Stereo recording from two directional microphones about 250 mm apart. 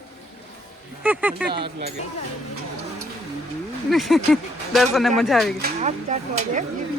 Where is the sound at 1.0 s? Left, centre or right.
Centre.